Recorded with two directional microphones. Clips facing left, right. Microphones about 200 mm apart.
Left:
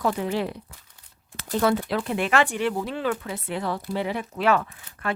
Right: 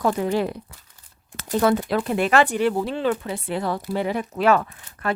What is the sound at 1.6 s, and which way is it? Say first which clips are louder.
A woman's voice: right 3 dB; 45° right (ahead or behind).